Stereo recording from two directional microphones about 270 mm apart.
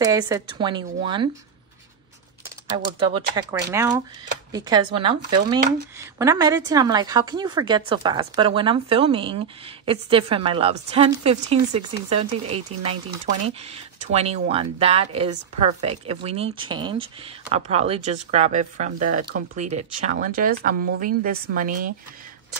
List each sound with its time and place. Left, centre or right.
0.0 s a woman's voice: centre
2.8 s a woman's voice: centre